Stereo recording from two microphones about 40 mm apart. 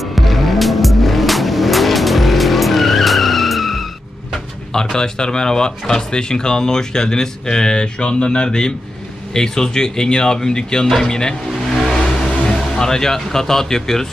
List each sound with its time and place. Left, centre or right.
0.0 s vehicle: centre
4.9 s speech: centre
12.4 s speech: centre